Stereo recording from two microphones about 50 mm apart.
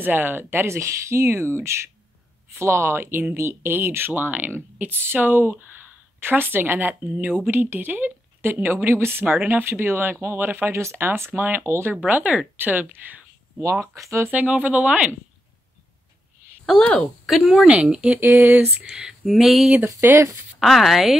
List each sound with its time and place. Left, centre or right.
0.0 s speech: right
9.3 s speech: right
9.7 s speech: right
12.0 s speech: right
12.5 s speech: right
13.6 s speech: right
14.3 s speech: right
16.8 s a woman's voice: centre
17.8 s speech: right
18.2 s speech: right
18.9 s speech: centre
19.2 s speech: centre
20.0 s speech: right
20.5 s speech: centre